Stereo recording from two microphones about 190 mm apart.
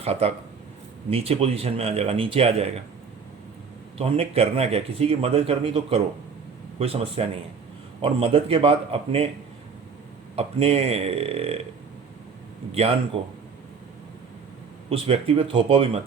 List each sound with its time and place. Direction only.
0.0 s speech: 30° right (ahead or behind)
3.9 s a man's voice: 30° right (ahead or behind)
10.3 s speech: 30° right (ahead or behind)
12.7 s speech: 30° right (ahead or behind)
14.8 s a man's voice: 30° right (ahead or behind)